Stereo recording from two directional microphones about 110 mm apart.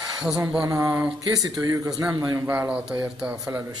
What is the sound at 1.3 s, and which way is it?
A man's voice, 35° right (ahead or behind).